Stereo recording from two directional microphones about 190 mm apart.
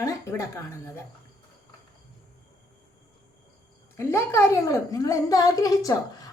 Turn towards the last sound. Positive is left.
turn(degrees=20)  # may be behind; listen again after turning